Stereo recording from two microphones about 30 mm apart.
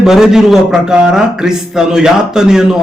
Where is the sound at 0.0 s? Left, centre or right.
Centre.